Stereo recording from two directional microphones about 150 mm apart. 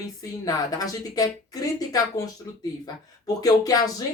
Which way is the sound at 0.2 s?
25° left (ahead or behind).